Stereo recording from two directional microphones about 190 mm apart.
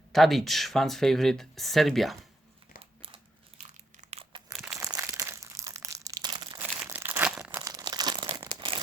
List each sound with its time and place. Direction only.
0.1 s speech: centre (ahead or behind)
4.1 s crumpling: 30° right (ahead or behind)
4.5 s crushing: 5° right (ahead or behind)
4.8 s crumpling: 15° right (ahead or behind)
6.8 s crumpling: 10° right (ahead or behind)
7.6 s crumpling: 20° right (ahead or behind)